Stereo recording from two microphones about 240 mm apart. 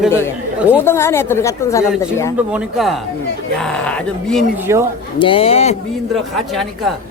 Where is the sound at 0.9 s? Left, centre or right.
Centre.